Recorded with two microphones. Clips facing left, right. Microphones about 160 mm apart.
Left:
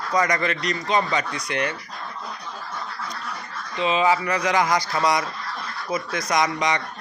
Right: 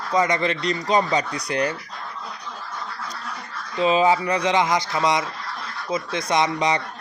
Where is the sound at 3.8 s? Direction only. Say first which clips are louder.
Right 2 dB; 40° right (ahead or behind).